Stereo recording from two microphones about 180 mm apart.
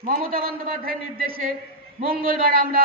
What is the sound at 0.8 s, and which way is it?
A man's voice, 55° right (ahead or behind).